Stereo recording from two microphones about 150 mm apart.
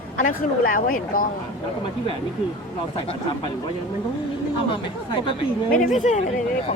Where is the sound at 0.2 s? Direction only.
65° left (ahead or behind).